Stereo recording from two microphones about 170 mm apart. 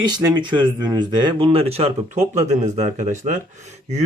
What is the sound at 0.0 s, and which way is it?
Speech, 25° right (ahead or behind).